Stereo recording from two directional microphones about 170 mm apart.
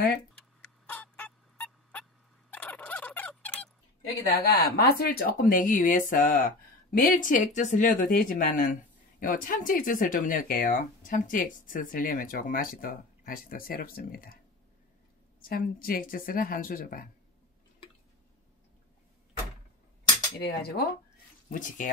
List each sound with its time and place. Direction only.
0.6 s fowl: 10° left (ahead or behind)
2.5 s turkey: 10° left (ahead or behind)
4.3 s speech: 75° left (ahead or behind)
4.7 s speech: 65° left (ahead or behind)
15.4 s speech: 60° left (ahead or behind)
20.3 s speech: 70° left (ahead or behind)
21.5 s speech: 50° left (ahead or behind)